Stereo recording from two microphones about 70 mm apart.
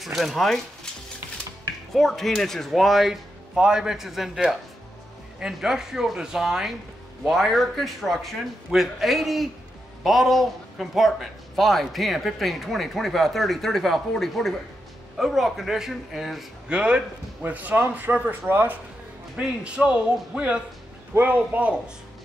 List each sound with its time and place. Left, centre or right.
0.0 s a man's voice: centre
2.0 s a man's voice: centre
16.6 s a man's voice: centre
19.3 s speech: centre
21.1 s a man's voice: right